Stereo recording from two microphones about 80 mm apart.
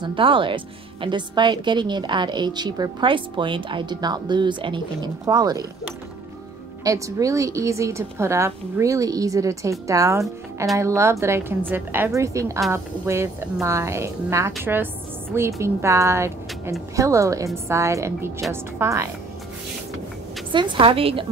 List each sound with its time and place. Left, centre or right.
0.0 s speech: right
1.0 s a woman's voice: right
5.2 s a woman's voice: right
6.8 s speech: right
8.9 s a woman's voice: right
12.1 s a woman's voice: right
20.5 s a woman's voice: right